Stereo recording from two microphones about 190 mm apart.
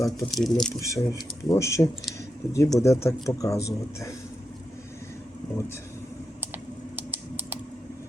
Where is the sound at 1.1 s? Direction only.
15° left (ahead or behind).